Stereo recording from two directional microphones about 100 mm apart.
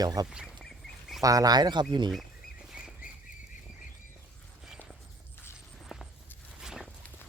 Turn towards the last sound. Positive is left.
turn(degrees=-5)  # may be behind; listen again after turning